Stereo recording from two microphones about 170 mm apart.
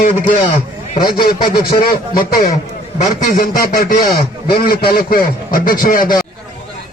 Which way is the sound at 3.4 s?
50° left (ahead or behind).